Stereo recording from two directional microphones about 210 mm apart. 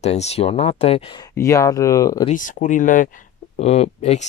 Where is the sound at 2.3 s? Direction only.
35° left (ahead or behind).